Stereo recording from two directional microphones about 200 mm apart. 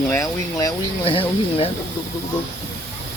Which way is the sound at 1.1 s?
25° left (ahead or behind).